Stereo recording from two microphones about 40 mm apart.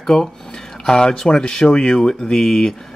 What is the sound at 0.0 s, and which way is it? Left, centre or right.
Speech, centre.